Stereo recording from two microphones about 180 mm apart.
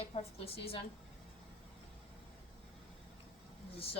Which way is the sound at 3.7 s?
30° left (ahead or behind).